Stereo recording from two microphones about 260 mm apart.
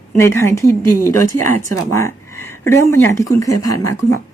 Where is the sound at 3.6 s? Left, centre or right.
Left.